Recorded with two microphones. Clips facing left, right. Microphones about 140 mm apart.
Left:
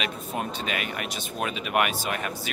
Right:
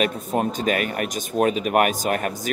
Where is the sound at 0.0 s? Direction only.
40° right (ahead or behind).